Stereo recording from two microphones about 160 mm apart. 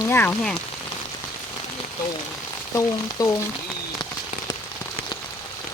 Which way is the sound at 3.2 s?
20° left (ahead or behind).